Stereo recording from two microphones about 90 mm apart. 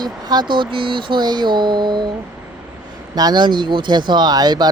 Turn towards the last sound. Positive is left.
turn(degrees=-50)  # may be behind; listen again after turning